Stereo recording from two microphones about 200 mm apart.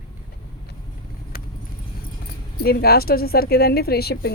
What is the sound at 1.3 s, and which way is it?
Vehicle, 45° left (ahead or behind).